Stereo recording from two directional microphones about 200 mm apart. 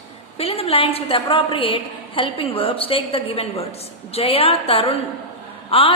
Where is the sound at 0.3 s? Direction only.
30° left (ahead or behind).